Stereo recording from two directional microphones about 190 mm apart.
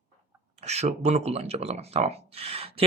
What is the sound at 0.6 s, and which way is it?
Speech, 35° right (ahead or behind).